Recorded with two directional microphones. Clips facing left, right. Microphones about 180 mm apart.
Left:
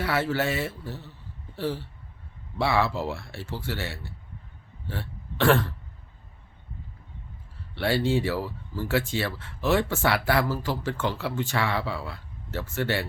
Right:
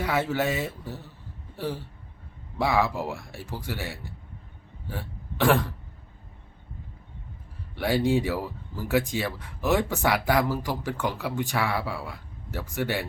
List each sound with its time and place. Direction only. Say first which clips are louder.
0.0 s speech: even; 15° right (ahead or behind)
7.8 s speech: right 1 dB; 15° right (ahead or behind)